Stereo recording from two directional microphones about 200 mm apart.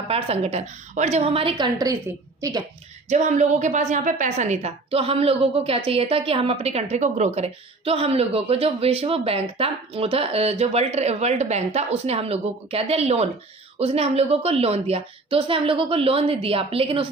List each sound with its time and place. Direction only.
0.1 s a woman's voice: 30° right (ahead or behind)
3.1 s a woman's voice: 35° right (ahead or behind)